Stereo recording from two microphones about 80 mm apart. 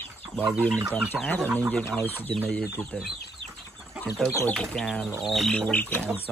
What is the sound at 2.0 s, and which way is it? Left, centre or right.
Speech, left.